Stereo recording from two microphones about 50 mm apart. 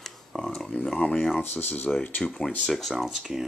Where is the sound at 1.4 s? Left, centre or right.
Left.